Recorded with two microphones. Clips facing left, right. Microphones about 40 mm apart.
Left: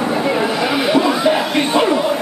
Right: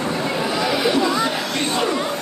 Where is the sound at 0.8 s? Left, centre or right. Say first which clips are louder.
Left 6 dB; centre.